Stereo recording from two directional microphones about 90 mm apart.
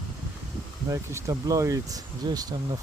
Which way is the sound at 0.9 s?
35° right (ahead or behind).